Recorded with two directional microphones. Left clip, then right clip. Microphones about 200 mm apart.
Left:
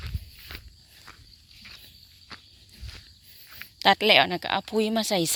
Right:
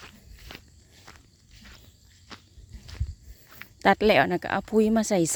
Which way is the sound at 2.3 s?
15° left (ahead or behind).